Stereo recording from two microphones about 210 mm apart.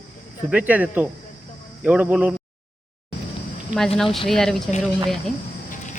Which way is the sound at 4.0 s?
Centre (ahead or behind).